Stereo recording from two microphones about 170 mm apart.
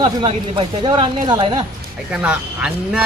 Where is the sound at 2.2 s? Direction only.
5° right (ahead or behind).